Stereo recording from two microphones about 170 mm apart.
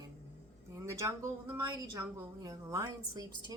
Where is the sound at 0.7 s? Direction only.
20° right (ahead or behind).